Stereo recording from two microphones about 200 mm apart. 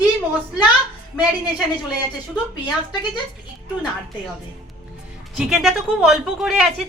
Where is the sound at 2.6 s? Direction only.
20° left (ahead or behind).